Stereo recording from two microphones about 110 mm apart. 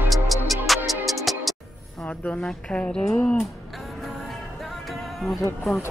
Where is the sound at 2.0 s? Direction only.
15° left (ahead or behind).